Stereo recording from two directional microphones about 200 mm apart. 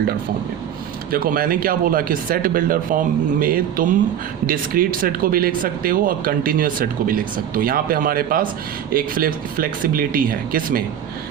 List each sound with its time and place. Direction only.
1.1 s speech: 45° right (ahead or behind)